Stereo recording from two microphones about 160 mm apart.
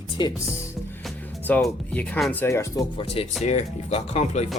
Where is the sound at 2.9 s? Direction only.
35° left (ahead or behind).